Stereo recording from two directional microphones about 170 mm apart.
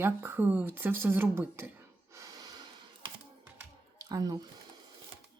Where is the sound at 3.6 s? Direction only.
20° right (ahead or behind).